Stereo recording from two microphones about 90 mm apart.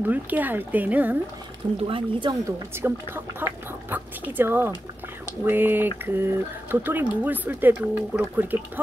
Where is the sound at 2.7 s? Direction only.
25° right (ahead or behind).